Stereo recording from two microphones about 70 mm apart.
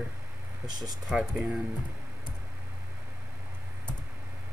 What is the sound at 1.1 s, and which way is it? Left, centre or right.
Speech, centre.